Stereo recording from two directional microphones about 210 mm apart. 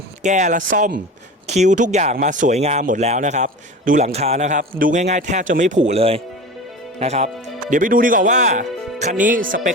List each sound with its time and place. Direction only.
0.2 s speech: 35° right (ahead or behind)